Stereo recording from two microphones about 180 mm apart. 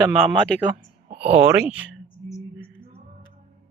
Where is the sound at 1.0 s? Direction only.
35° right (ahead or behind).